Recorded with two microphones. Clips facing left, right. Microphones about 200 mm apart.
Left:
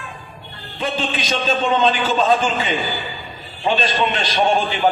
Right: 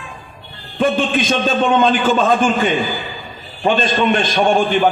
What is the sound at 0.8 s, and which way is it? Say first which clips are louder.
A man's voice: right 7 dB; 50° right (ahead or behind).